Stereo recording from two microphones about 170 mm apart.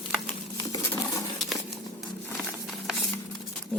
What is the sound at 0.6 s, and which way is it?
Patter, 20° left (ahead or behind).